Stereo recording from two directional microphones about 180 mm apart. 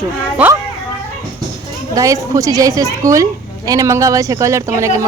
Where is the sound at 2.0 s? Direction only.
20° right (ahead or behind).